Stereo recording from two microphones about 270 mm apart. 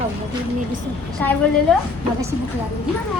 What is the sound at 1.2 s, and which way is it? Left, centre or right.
Speech, centre.